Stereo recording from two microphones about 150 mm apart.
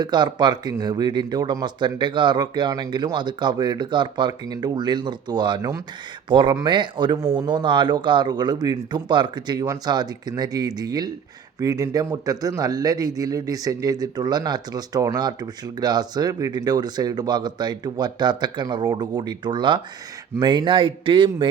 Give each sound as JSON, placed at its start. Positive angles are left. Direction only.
{"t": 0.0, "sound": "a man's voice", "side_deg": -30}